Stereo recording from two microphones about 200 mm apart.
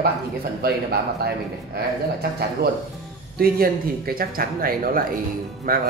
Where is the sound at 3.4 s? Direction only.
50° right (ahead or behind).